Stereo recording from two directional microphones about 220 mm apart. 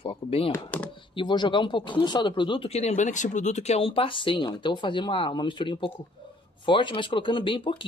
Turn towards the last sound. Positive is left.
turn(degrees=25)  # may be behind; listen again after turning